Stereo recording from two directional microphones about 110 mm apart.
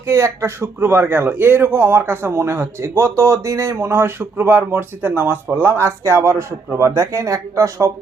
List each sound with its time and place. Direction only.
0.0 s a man's voice: 25° right (ahead or behind)